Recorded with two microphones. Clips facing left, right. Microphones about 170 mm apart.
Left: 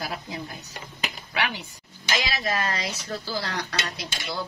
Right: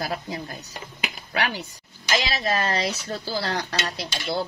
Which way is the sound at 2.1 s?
30° right (ahead or behind).